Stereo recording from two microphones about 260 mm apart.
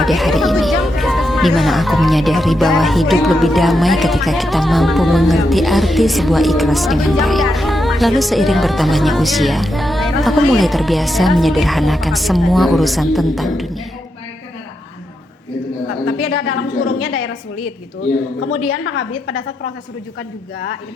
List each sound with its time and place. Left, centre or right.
0.0 s speech: centre
16.0 s a sound: left
18.3 s a woman's voice: left